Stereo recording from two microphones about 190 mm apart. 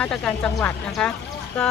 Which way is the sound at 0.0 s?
5° left (ahead or behind).